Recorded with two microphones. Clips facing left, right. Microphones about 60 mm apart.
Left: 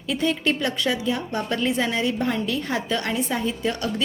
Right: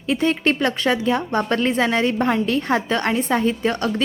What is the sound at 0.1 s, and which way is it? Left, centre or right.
A woman's voice, right.